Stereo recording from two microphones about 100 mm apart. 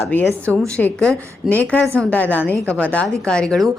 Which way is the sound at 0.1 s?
20° left (ahead or behind).